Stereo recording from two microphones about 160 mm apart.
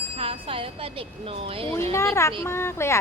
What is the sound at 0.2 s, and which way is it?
Speech, 35° right (ahead or behind).